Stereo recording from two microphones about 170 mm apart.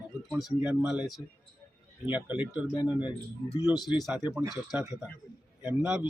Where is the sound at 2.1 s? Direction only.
10° right (ahead or behind).